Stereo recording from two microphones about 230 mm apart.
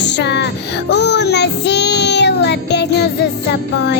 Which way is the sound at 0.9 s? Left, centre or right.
Left.